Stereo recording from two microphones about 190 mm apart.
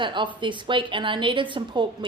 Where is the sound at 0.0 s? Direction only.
25° right (ahead or behind).